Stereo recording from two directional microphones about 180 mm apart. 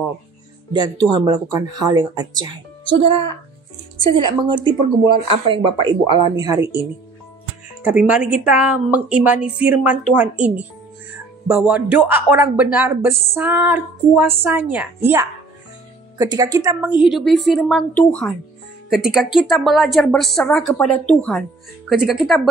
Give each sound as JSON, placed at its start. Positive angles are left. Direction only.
{"t": 0.7, "sound": "a child's voice", "side_deg": -25}
{"t": 17.0, "sound": "speech", "side_deg": 0}